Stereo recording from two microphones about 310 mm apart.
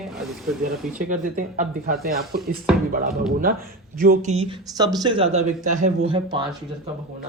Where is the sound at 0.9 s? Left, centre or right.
Right.